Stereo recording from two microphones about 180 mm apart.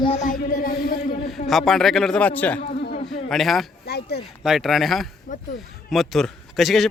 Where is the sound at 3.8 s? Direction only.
65° left (ahead or behind).